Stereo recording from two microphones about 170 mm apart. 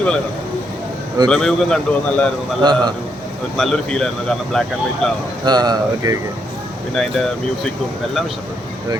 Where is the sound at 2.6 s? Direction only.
25° right (ahead or behind).